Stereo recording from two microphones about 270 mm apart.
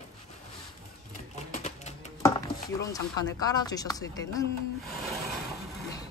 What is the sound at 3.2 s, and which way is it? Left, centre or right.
Speech, centre.